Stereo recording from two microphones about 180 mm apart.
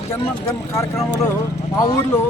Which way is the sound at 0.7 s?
15° left (ahead or behind).